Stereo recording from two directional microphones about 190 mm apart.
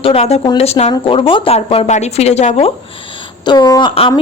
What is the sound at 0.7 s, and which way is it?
Speech, 35° left (ahead or behind).